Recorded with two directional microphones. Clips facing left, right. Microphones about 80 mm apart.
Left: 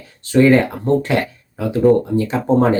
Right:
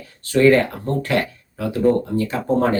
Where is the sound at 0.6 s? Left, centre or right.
Left.